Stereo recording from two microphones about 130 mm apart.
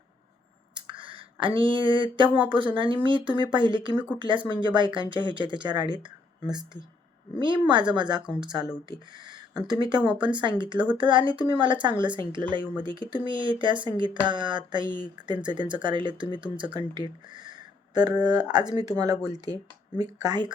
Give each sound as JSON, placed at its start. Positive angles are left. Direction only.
{"t": 0.7, "sound": "a sound", "side_deg": -40}
{"t": 2.7, "sound": "speech", "side_deg": -40}
{"t": 7.4, "sound": "speech", "side_deg": -35}